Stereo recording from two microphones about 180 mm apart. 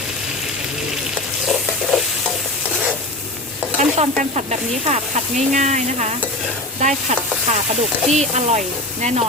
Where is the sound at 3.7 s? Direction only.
45° right (ahead or behind).